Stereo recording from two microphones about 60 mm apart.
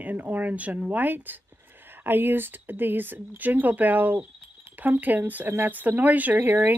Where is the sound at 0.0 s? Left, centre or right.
Right.